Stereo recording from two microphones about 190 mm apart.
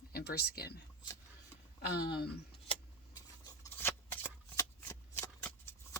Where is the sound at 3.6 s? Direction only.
10° left (ahead or behind).